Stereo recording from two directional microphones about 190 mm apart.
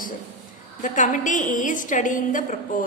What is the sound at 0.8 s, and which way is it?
A woman's voice, 40° left (ahead or behind).